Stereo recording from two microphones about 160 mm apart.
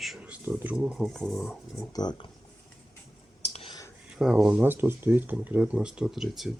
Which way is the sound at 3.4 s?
40° left (ahead or behind).